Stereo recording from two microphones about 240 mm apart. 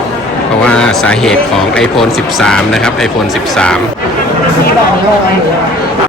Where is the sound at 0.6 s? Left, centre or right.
Centre.